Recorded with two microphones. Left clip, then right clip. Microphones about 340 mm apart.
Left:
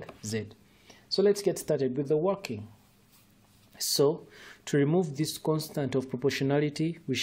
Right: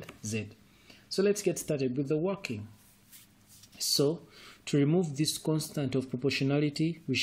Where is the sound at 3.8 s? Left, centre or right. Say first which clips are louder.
Left 3 dB; left.